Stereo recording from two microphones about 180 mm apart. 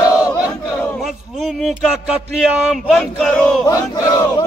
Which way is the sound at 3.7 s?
20° left (ahead or behind).